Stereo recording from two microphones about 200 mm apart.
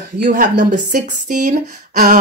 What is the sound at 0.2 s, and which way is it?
Speech, 40° right (ahead or behind).